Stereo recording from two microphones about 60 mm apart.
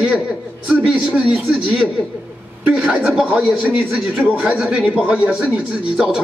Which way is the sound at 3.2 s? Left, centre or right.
Centre.